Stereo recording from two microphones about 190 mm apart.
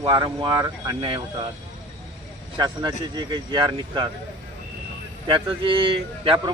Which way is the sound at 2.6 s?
25° right (ahead or behind).